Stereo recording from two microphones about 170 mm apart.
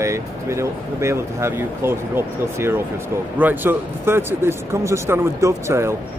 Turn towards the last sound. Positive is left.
turn(degrees=-15)  # may be behind; listen again after turning